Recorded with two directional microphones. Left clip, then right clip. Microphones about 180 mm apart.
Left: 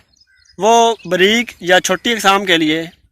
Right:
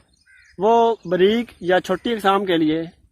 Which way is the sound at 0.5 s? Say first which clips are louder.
Left 5 dB; 15° left (ahead or behind).